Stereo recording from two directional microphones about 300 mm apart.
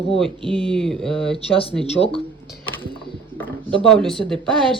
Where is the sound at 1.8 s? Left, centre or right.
Centre.